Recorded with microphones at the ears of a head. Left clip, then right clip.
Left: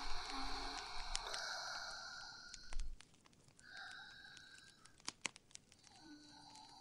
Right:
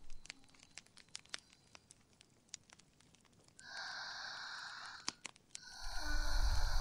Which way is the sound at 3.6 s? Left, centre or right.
Right.